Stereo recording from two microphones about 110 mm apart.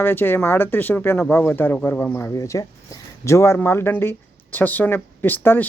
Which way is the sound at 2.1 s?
25° left (ahead or behind).